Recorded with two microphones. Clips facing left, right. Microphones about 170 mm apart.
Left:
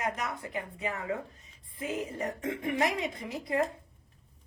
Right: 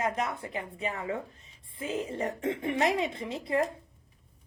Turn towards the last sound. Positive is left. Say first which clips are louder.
# right 3 dB
turn(degrees=-25)  # may be behind; listen again after turning